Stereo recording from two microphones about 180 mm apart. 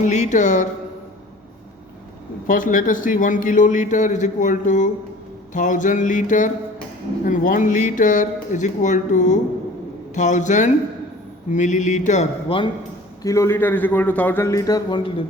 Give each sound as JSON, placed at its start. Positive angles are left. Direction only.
{"t": 0.0, "sound": "a man's voice", "side_deg": 40}
{"t": 2.5, "sound": "a man's voice", "side_deg": 45}
{"t": 13.2, "sound": "a man's voice", "side_deg": 15}